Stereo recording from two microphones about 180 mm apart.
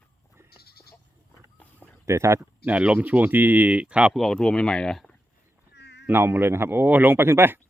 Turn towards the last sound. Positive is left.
turn(degrees=-10)  # may be behind; listen again after turning